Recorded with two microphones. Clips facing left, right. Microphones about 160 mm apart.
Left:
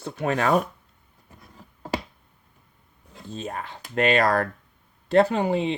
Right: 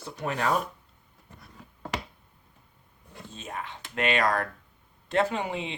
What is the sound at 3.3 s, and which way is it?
Speech, 40° left (ahead or behind).